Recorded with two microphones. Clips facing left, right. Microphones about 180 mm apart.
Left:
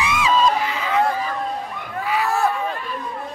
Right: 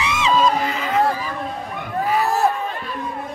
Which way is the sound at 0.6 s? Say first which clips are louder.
Right 1 dB; 45° right (ahead or behind).